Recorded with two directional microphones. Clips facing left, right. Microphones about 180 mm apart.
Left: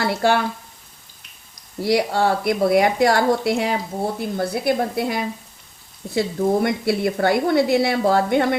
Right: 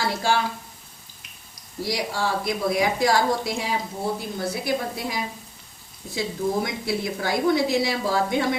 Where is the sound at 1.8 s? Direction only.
60° left (ahead or behind).